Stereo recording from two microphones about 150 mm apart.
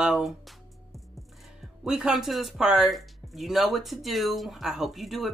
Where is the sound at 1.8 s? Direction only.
5° right (ahead or behind).